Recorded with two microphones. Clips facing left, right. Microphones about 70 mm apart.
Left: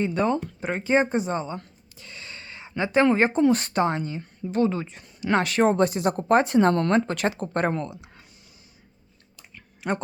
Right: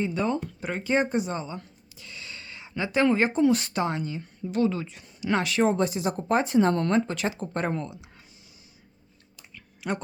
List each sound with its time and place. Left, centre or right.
0.0 s speech: left
0.6 s speech: left
9.6 s a sound: left